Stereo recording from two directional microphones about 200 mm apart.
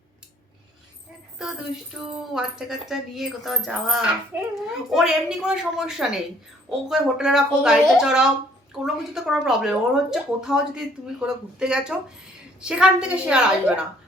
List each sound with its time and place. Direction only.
1.4 s a woman's voice: 5° right (ahead or behind)